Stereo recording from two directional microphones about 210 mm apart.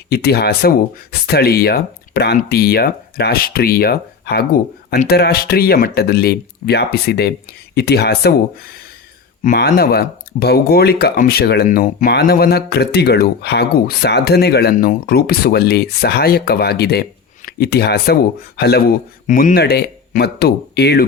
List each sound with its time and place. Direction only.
0.1 s speech: 50° left (ahead or behind)